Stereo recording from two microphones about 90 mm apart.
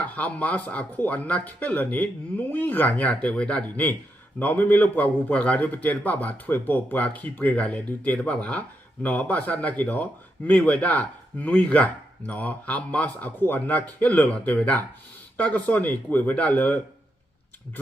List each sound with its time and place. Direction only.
0.2 s a man's voice: 15° left (ahead or behind)